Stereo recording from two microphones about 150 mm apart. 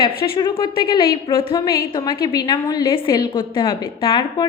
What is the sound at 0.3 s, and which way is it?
A woman's voice, 30° left (ahead or behind).